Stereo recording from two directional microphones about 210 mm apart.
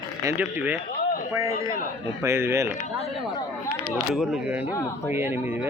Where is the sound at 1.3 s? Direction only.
15° right (ahead or behind).